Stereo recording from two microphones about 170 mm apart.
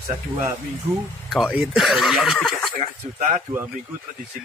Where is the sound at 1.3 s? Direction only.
Centre (ahead or behind).